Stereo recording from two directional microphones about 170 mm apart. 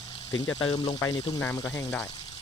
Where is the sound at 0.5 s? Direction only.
25° left (ahead or behind).